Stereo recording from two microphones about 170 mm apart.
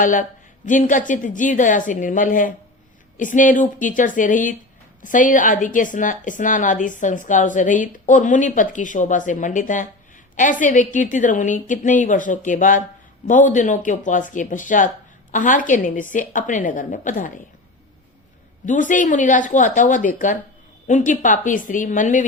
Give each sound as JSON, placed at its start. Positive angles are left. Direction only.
{"t": 0.0, "sound": "a man's voice", "side_deg": 50}
{"t": 18.6, "sound": "a woman's voice", "side_deg": 50}